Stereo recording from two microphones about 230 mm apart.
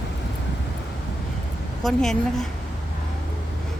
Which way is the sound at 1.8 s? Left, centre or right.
Centre.